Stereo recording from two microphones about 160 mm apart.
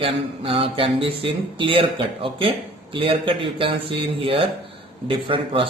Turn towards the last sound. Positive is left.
turn(degrees=-30)  # may be behind; listen again after turning